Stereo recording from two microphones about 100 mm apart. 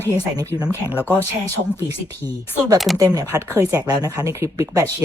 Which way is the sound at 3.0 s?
35° right (ahead or behind).